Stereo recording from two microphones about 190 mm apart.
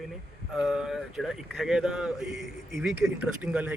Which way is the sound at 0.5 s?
5° right (ahead or behind).